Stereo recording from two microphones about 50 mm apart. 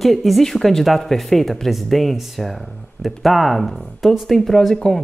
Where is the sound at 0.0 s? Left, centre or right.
Centre.